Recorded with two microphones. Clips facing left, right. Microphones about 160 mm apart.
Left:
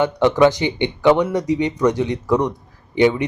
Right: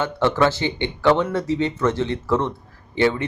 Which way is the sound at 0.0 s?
15° left (ahead or behind).